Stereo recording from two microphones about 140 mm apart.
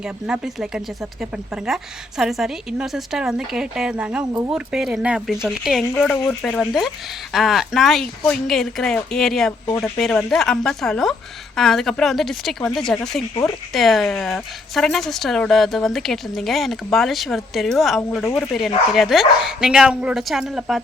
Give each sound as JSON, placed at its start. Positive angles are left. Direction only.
{"t": 0.3, "sound": "a woman's voice", "side_deg": -5}
{"t": 5.9, "sound": "a woman's voice", "side_deg": 10}
{"t": 9.6, "sound": "speech", "side_deg": 20}
{"t": 10.0, "sound": "a woman's voice", "side_deg": 5}